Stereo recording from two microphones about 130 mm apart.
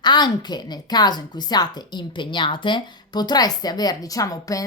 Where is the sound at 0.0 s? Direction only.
35° left (ahead or behind).